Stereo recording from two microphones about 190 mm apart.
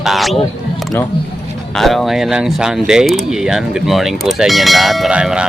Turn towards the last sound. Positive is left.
turn(degrees=-5)  # may be behind; listen again after turning